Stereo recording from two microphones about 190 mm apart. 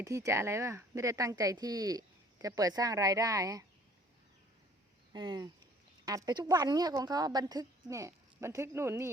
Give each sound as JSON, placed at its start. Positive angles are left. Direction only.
{"t": 0.0, "sound": "speech", "side_deg": -15}
{"t": 5.1, "sound": "a woman's voice", "side_deg": -25}